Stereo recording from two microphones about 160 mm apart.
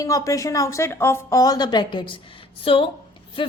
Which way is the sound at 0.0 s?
20° left (ahead or behind).